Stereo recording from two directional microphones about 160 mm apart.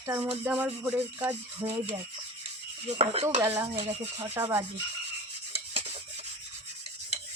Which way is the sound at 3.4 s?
15° right (ahead or behind).